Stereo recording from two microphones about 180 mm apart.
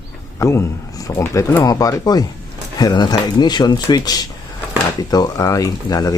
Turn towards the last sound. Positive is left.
turn(degrees=20)  # may be behind; listen again after turning